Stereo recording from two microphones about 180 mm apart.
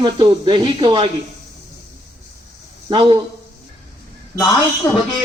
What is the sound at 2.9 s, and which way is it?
Speech, 30° right (ahead or behind).